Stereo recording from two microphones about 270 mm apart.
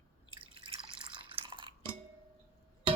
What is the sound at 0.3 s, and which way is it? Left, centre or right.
Drip, centre.